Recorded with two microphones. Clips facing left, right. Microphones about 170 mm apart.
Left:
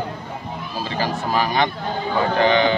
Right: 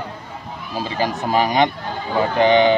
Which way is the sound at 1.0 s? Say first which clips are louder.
Right 3 dB; 15° right (ahead or behind).